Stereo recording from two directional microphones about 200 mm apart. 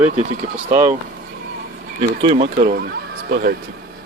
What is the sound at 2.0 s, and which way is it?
Speech, 30° right (ahead or behind).